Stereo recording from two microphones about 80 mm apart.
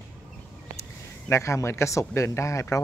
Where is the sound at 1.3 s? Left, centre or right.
Left.